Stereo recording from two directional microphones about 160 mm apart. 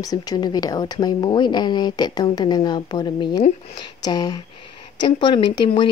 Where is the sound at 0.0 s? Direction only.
25° left (ahead or behind).